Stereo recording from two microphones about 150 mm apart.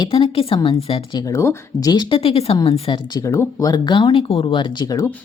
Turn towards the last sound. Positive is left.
turn(degrees=25)  # may be behind; listen again after turning